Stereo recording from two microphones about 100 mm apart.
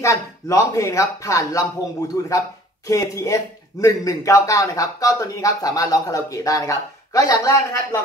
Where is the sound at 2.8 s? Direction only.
35° left (ahead or behind).